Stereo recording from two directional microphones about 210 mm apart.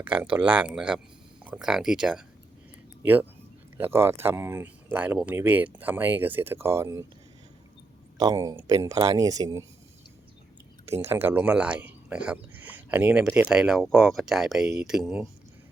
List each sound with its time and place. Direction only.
0.0 s speech: 10° right (ahead or behind)
8.2 s speech: 20° right (ahead or behind)
10.8 s speech: 10° right (ahead or behind)